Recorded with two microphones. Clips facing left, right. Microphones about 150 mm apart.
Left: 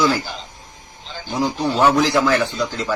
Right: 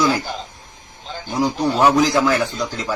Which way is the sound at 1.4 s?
10° right (ahead or behind).